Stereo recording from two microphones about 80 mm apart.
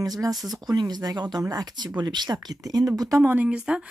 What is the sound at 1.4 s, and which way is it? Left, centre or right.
Speech, right.